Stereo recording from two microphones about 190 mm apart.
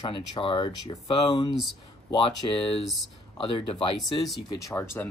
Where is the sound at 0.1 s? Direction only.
25° left (ahead or behind).